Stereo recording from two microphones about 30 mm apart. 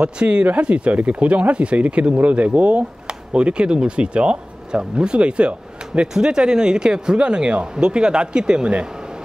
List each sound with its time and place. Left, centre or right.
0.0 s speech: right
2.8 s speech: right
6.2 s speech: right